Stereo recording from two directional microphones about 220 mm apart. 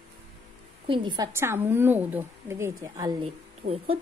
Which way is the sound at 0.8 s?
20° right (ahead or behind).